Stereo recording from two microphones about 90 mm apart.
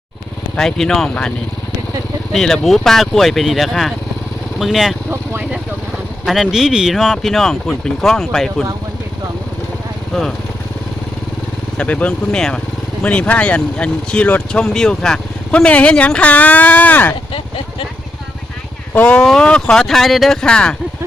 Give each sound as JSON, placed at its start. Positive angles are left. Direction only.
{"t": 0.5, "sound": "speech", "side_deg": 5}
{"t": 2.3, "sound": "speech", "side_deg": 5}
{"t": 5.1, "sound": "speech", "side_deg": -20}
{"t": 6.2, "sound": "speech", "side_deg": 0}
{"t": 10.1, "sound": "speech", "side_deg": 0}
{"t": 11.8, "sound": "speech", "side_deg": 15}
{"t": 14.6, "sound": "speech", "side_deg": 5}
{"t": 18.9, "sound": "speech", "side_deg": 15}